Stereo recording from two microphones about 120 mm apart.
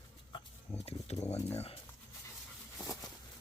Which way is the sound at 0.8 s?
65° left (ahead or behind).